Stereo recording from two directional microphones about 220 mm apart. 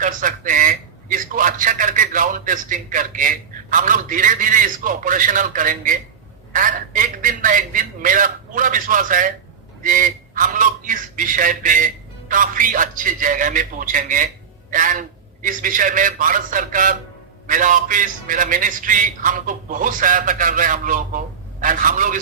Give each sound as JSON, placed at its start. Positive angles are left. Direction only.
{"t": 0.0, "sound": "a man's voice", "side_deg": -35}